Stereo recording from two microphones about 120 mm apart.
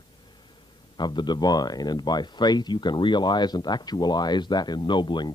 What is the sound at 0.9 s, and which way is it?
Speech, 40° left (ahead or behind).